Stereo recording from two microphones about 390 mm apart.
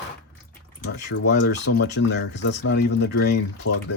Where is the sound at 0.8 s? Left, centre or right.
Left.